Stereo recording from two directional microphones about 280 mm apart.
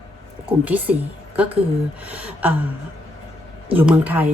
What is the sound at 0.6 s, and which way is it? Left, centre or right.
Speech, centre.